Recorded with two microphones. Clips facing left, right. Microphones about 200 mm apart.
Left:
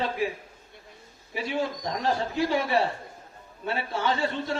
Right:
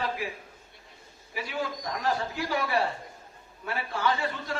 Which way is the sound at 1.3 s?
25° left (ahead or behind).